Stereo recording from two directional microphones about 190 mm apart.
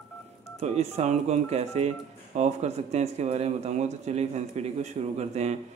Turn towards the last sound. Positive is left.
turn(degrees=-35)  # may be behind; listen again after turning